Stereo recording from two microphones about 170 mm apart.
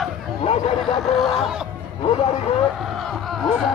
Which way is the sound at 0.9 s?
Centre (ahead or behind).